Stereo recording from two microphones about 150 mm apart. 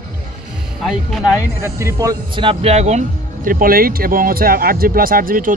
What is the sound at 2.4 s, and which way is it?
Speech, 45° right (ahead or behind).